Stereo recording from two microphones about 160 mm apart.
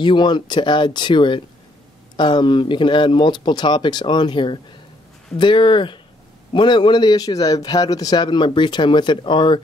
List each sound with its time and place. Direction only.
0.0 s a man's voice: 30° left (ahead or behind)